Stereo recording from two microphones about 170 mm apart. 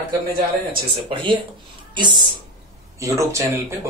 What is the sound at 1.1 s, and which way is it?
Speech, 30° right (ahead or behind).